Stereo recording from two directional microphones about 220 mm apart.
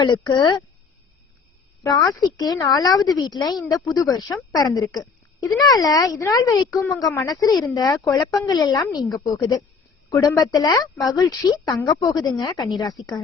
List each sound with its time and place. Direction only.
0.0 s speech: 20° left (ahead or behind)
2.1 s speech: 15° left (ahead or behind)